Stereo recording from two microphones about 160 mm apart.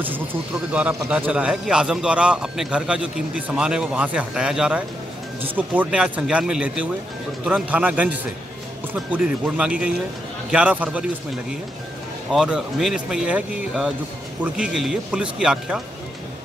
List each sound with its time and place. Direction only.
0.7 s a man's voice: 10° right (ahead or behind)
12.3 s speech: 5° right (ahead or behind)